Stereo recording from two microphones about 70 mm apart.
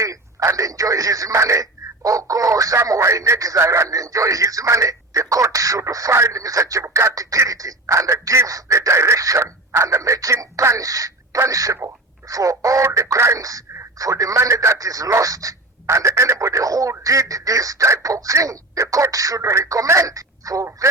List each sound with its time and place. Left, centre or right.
0.0 s a man's voice: right